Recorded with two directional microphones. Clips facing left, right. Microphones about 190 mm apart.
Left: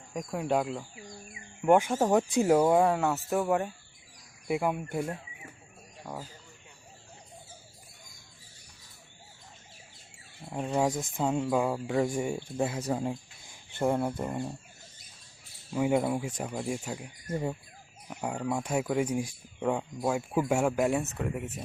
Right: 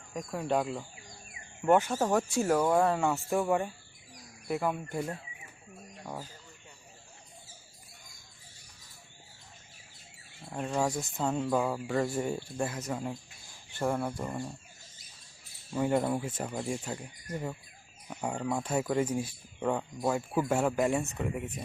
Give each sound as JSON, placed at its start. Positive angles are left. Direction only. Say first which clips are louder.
{"t": 0.1, "sound": "speech", "louder": "left 2 dB", "side_deg": 5}
{"t": 1.6, "sound": "speech", "louder": "left 2 dB", "side_deg": 15}
{"t": 4.4, "sound": "speech", "louder": "left 2 dB", "side_deg": 15}
{"t": 10.5, "sound": "speech", "louder": "left 2 dB", "side_deg": 15}
{"t": 15.7, "sound": "speech", "louder": "left 2 dB", "side_deg": 10}
{"t": 17.2, "sound": "speech", "louder": "left 5 dB", "side_deg": 25}
{"t": 18.1, "sound": "speech", "louder": "left 1 dB", "side_deg": 5}